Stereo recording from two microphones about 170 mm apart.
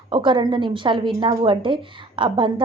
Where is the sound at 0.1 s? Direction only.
30° right (ahead or behind).